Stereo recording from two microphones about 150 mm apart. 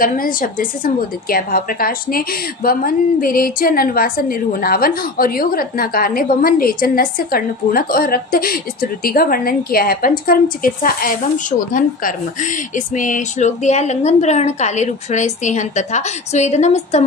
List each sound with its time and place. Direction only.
0.0 s a woman's voice: 70° left (ahead or behind); by 17.0 s 50° left (ahead or behind)